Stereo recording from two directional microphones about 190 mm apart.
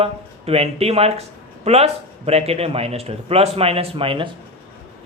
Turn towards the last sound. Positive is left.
turn(degrees=-30)  # may be behind; listen again after turning